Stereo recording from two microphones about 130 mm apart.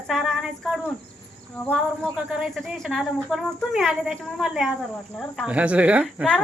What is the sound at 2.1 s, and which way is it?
Speech, 5° right (ahead or behind).